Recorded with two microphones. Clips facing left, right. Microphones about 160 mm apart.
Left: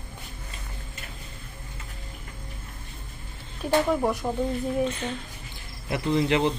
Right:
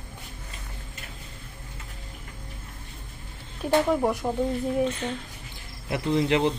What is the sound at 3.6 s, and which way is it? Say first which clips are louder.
Speech: right 1 dB; 20° right (ahead or behind).